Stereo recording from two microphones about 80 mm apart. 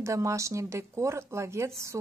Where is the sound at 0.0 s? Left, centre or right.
Right.